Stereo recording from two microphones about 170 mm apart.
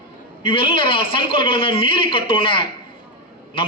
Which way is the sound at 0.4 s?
30° left (ahead or behind).